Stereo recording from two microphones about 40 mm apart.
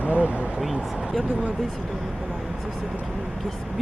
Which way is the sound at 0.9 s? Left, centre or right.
Centre.